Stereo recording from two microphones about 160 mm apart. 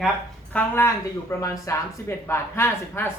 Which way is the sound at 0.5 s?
15° left (ahead or behind).